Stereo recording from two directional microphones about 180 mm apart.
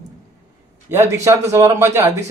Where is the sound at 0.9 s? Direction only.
15° right (ahead or behind).